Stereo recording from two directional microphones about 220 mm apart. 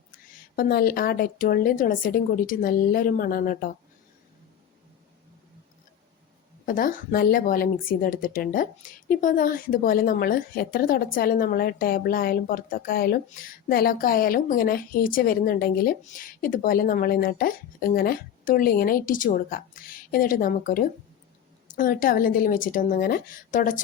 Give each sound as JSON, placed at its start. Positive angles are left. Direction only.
{"t": 0.5, "sound": "speech", "side_deg": 40}
{"t": 6.7, "sound": "speech", "side_deg": 40}